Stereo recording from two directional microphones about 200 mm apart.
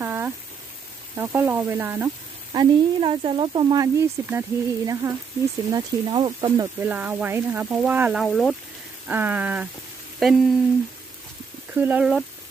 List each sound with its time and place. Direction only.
0.0 s a sound: 10° right (ahead or behind)
1.1 s speech: 10° right (ahead or behind)
2.5 s speech: 20° right (ahead or behind); by 8.5 s centre (ahead or behind)
9.0 s speech: 10° right (ahead or behind)
11.7 s speech: 10° right (ahead or behind)